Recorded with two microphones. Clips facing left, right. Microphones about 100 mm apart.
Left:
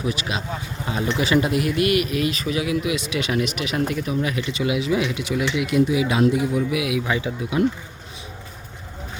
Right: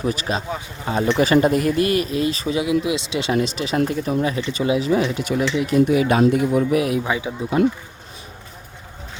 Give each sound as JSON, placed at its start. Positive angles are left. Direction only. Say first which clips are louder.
{"t": 0.0, "sound": "speech", "louder": "right 3 dB", "side_deg": -40}
{"t": 5.8, "sound": "speech", "louder": "right 3 dB", "side_deg": -50}
{"t": 7.1, "sound": "speech", "louder": "right 1 dB", "side_deg": -15}